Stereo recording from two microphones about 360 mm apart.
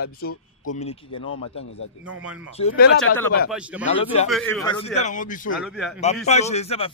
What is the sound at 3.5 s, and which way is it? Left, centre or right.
A man's voice, centre.